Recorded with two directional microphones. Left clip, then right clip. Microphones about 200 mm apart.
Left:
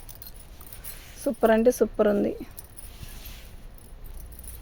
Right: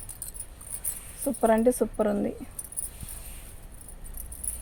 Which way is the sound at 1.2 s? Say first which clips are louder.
Left 2 dB; 50° left (ahead or behind).